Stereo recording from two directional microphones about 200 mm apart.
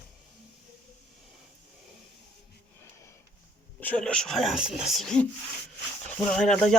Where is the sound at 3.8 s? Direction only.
5° left (ahead or behind).